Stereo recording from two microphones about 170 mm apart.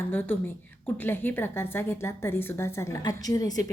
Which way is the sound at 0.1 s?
10° left (ahead or behind).